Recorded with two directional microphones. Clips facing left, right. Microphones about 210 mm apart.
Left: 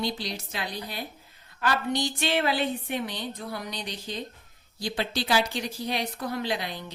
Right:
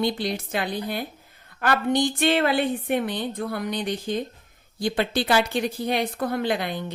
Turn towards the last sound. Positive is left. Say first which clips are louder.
# right 5 dB
turn(degrees=-55)  # may be behind; listen again after turning